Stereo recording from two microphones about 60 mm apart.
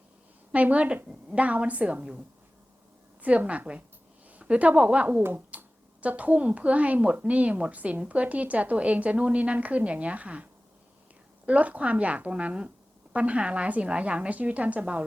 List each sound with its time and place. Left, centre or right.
0.5 s speech: right
11.4 s speech: right